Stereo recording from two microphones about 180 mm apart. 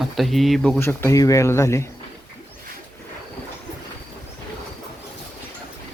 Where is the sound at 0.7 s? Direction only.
15° left (ahead or behind).